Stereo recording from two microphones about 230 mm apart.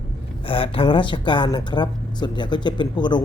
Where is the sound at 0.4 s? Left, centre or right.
Left.